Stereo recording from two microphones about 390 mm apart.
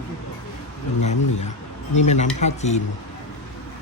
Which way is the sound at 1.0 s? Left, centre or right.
Left.